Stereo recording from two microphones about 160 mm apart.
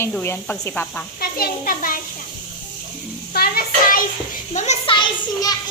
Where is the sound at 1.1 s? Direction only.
65° left (ahead or behind).